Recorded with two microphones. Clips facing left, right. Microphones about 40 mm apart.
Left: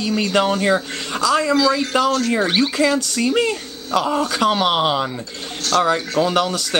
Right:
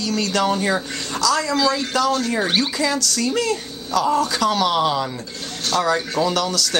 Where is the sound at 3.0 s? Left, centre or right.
Left.